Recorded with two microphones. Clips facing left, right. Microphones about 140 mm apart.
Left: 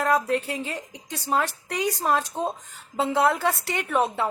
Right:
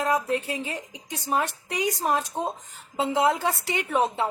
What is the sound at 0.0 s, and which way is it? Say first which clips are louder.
A woman's voice: left 2 dB; 20° right (ahead or behind).